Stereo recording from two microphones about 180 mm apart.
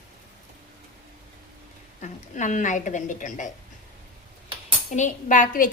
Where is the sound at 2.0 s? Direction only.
45° left (ahead or behind).